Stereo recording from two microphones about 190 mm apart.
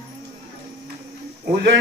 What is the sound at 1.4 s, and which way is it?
Speech, 65° right (ahead or behind).